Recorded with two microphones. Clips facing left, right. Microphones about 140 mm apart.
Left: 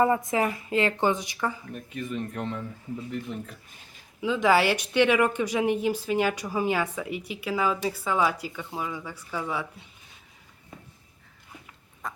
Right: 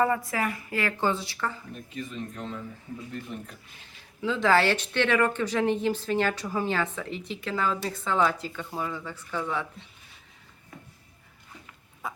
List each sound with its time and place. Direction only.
0.0 s speech: 20° left (ahead or behind)
1.7 s a man's voice: 55° left (ahead or behind)
4.2 s speech: 15° left (ahead or behind)
12.0 s a sound: 5° right (ahead or behind)